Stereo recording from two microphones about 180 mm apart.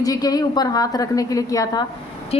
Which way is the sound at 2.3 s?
35° left (ahead or behind).